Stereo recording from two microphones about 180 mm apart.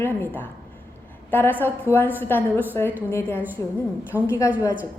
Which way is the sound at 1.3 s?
10° left (ahead or behind).